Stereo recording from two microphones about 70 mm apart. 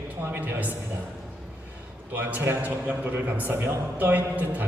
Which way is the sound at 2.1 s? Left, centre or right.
Right.